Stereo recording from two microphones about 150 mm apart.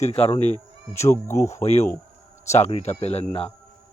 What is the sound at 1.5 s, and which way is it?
Speech, 45° left (ahead or behind).